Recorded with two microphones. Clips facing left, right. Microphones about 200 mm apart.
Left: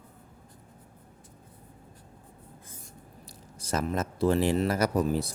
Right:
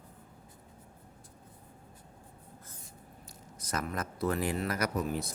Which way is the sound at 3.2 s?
30° left (ahead or behind).